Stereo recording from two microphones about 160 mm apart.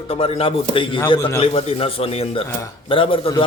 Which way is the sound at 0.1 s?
35° left (ahead or behind).